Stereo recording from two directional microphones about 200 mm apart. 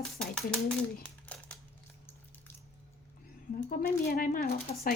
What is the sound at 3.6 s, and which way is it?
Speech, 45° left (ahead or behind).